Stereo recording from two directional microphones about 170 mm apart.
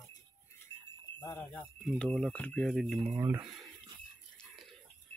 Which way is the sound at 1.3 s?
10° left (ahead or behind).